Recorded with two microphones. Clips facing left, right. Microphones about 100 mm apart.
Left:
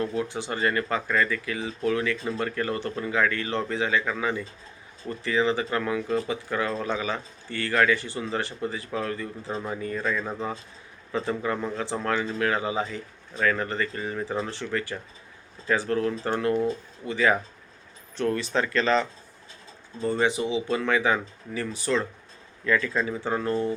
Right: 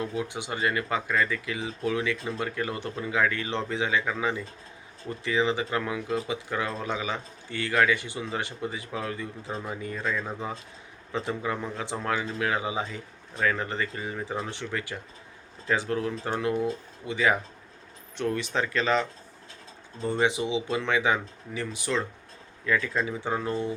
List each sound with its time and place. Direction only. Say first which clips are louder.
0.0 s speech: left 3 dB; 15° right (ahead or behind)